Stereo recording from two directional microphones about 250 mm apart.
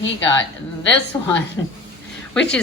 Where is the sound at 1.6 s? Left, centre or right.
Centre.